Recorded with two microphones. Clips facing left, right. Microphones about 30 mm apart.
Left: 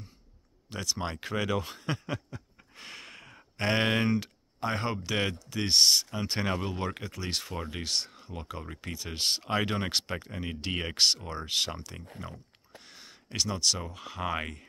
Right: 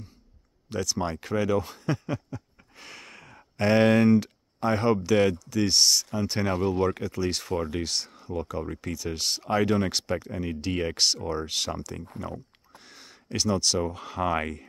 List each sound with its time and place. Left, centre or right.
0.7 s speech: centre
1.3 s speech: left
2.7 s a sound: centre
3.5 s speech: centre; by 6.0 s left
6.4 s speech: centre
7.4 s speech: centre
12.1 s a sound: centre
14.0 s speech: centre